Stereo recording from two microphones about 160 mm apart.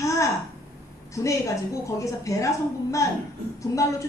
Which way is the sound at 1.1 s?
20° left (ahead or behind).